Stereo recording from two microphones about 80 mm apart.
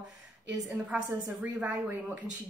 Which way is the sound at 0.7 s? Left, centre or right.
Centre.